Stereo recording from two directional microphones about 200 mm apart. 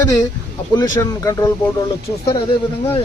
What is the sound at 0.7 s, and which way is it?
Speech, 20° left (ahead or behind).